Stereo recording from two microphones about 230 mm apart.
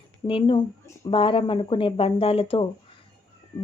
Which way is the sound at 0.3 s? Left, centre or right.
Left.